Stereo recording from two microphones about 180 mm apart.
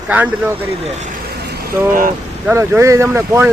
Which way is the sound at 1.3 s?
60° right (ahead or behind).